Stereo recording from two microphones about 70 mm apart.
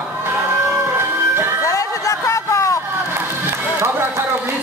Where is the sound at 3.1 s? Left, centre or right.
Right.